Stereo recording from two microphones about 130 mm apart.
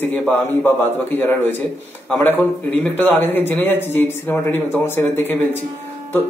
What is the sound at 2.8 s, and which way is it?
Speech, 15° left (ahead or behind).